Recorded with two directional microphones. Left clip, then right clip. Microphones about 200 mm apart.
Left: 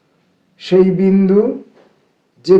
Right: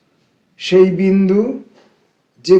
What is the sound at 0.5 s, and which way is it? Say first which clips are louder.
Speech: right 1 dB; 30° left (ahead or behind).